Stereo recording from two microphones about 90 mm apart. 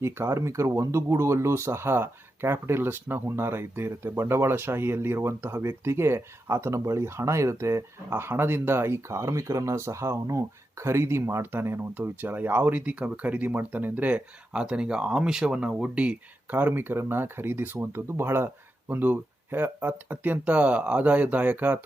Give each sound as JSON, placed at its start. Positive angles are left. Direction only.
{"t": 0.0, "sound": "speech", "side_deg": -30}